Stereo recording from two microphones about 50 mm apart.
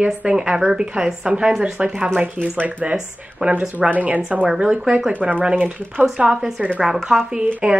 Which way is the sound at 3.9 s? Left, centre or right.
Right.